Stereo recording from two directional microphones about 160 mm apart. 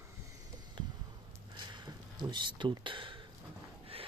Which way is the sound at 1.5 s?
30° right (ahead or behind).